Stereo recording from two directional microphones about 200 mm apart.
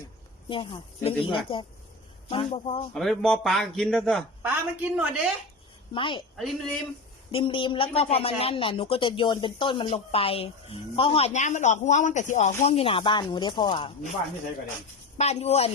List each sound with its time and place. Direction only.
0.4 s a woman's voice: 25° left (ahead or behind)
2.9 s a man's voice: centre (ahead or behind)
5.9 s a woman's voice: 25° left (ahead or behind)
6.3 s a man's voice: centre (ahead or behind)
7.3 s a woman's voice: 25° left (ahead or behind)
15.2 s speech: 35° left (ahead or behind)